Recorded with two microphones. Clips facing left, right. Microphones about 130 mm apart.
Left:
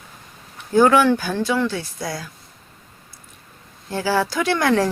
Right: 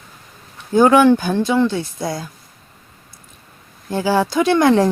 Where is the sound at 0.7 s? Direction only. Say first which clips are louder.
Right 3 dB; 20° right (ahead or behind).